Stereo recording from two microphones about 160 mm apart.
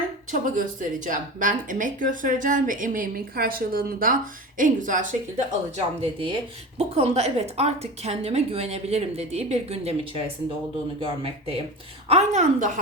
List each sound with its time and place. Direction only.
0.3 s speech: 55° right (ahead or behind)
6.0 s a woman's voice: 35° right (ahead or behind); by 12.8 s 55° right (ahead or behind)